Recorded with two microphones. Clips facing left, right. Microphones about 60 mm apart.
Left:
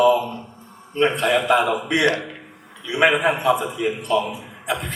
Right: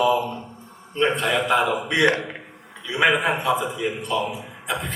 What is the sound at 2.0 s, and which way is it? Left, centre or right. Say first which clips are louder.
Speech: even; centre.